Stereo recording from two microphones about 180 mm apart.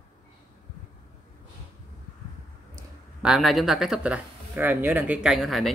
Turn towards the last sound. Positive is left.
turn(degrees=0)  # may be behind; listen again after turning